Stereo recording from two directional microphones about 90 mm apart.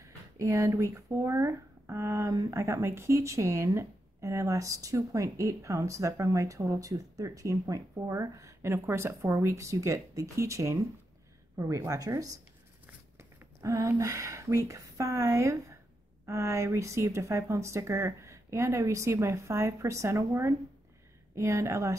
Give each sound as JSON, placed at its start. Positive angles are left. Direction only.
{"t": 0.0, "sound": "speech", "side_deg": -35}